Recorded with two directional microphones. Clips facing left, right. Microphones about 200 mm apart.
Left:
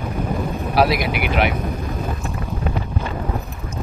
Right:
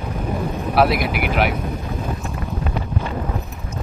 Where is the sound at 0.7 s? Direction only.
Centre (ahead or behind).